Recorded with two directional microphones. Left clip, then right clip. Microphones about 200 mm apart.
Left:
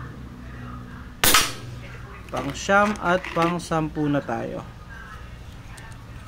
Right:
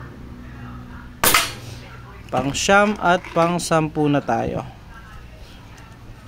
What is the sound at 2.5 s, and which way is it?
Speech, 55° right (ahead or behind).